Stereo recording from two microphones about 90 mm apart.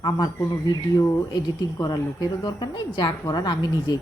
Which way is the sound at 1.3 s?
50° left (ahead or behind).